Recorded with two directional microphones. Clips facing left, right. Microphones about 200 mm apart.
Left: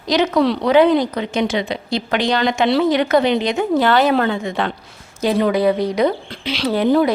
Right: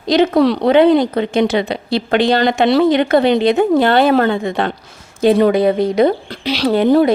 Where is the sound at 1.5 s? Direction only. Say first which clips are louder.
Right 4 dB; 65° right (ahead or behind).